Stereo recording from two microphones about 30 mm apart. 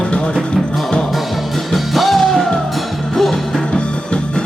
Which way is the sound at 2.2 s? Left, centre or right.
Centre.